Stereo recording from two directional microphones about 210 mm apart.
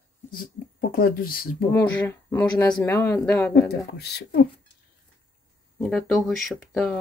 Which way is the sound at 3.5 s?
50° left (ahead or behind).